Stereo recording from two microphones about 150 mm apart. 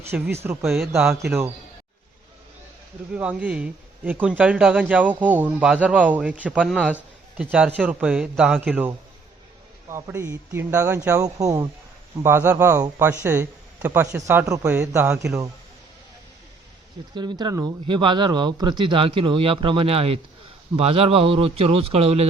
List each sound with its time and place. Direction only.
0.0 s speech: 15° right (ahead or behind)
0.6 s speech: 5° right (ahead or behind)
3.1 s speech: 10° right (ahead or behind)
9.9 s speech: 15° right (ahead or behind)
17.2 s speech: 30° right (ahead or behind)